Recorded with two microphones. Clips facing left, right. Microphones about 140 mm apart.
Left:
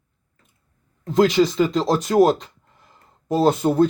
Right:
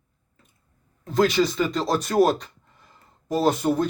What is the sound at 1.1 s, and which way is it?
Speech, 20° left (ahead or behind).